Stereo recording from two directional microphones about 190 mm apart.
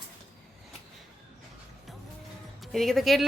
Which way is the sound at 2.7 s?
Centre (ahead or behind).